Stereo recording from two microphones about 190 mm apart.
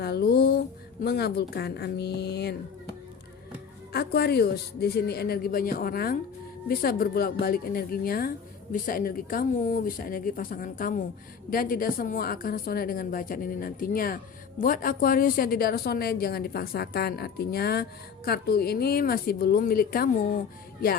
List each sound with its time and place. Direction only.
0.0 s a sound: 55° left (ahead or behind)
1.0 s speech: 55° left (ahead or behind)
3.9 s a woman's voice: 55° left (ahead or behind)